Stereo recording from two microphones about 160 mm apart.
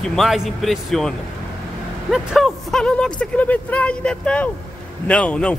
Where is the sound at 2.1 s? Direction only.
Centre (ahead or behind).